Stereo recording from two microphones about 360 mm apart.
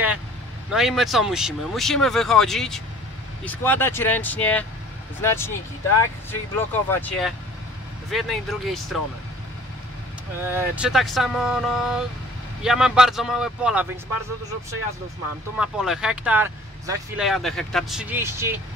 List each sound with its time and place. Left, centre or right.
0.7 s speech: centre
6.5 s speech: centre
10.4 s speech: centre
15.5 s speech: centre